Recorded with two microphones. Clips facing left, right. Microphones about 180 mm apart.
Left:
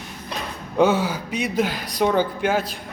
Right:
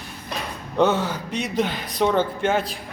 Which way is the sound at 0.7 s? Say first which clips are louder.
Left 2 dB; 5° left (ahead or behind).